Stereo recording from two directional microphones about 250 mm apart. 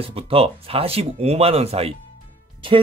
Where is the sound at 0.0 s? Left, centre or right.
Right.